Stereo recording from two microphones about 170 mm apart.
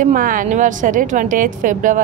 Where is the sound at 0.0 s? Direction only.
50° right (ahead or behind).